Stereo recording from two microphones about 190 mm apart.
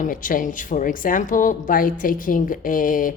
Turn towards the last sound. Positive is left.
turn(degrees=45)  # may be behind; listen again after turning